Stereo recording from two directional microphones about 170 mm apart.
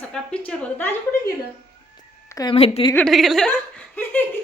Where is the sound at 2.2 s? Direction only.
20° left (ahead or behind).